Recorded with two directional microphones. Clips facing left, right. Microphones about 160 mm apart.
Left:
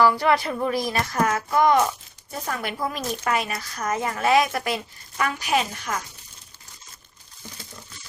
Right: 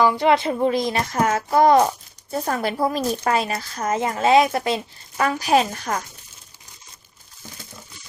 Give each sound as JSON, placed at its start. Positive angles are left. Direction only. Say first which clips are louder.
{"t": 0.0, "sound": "speech", "louder": "right 2 dB", "side_deg": -20}